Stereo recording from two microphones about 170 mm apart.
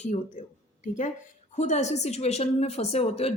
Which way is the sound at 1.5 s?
45° left (ahead or behind).